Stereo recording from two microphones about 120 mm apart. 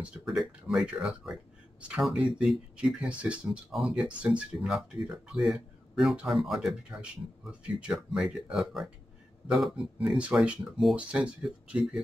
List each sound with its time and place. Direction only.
0.0 s speech: 5° right (ahead or behind)